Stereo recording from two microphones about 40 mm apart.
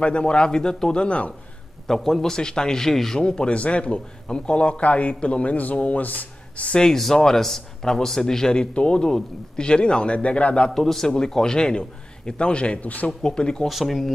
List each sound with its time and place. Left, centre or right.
0.0 s speech: left
1.0 s speech: left
2.0 s speech: centre
2.3 s speech: centre
6.8 s speech: centre
8.5 s speech: left
10.7 s speech: centre; by 12.8 s left
12.8 s speech: left
13.2 s speech: left
13.7 s speech: centre